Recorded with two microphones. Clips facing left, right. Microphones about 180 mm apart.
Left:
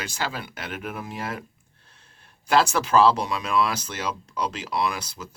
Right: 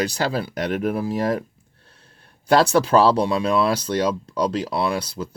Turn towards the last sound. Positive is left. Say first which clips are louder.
# right 5 dB
turn(degrees=-30)  # may be behind; listen again after turning